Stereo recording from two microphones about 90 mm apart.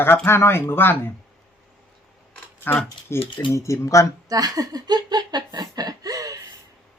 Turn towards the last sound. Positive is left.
turn(degrees=-45)  # may be behind; listen again after turning